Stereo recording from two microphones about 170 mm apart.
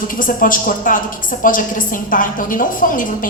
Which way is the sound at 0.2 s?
55° left (ahead or behind).